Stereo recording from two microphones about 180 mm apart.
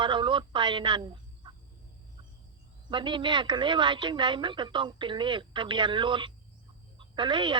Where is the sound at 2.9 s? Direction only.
25° right (ahead or behind).